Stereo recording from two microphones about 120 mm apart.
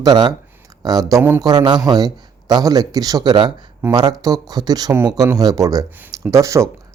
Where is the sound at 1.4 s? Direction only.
35° right (ahead or behind).